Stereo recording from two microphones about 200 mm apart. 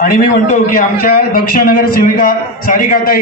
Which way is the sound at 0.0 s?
45° left (ahead or behind).